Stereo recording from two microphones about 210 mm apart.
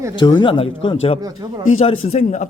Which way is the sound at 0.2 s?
20° left (ahead or behind).